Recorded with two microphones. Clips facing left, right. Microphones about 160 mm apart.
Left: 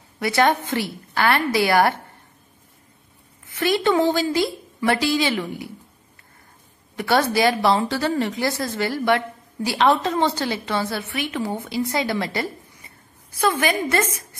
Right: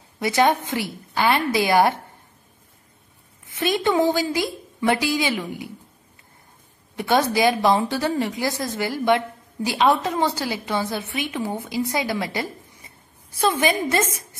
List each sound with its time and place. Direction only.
0.2 s a woman's voice: 15° right (ahead or behind)
3.4 s a woman's voice: 20° right (ahead or behind)
7.0 s a woman's voice: 15° right (ahead or behind)